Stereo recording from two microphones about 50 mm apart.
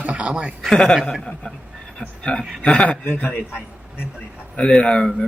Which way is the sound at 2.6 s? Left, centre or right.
Centre.